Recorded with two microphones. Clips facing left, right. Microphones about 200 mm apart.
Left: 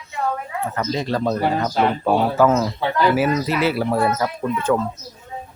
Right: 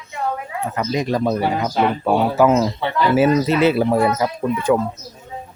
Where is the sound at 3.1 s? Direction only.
25° right (ahead or behind).